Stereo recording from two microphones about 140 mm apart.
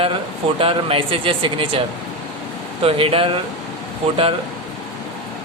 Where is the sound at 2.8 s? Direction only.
40° right (ahead or behind).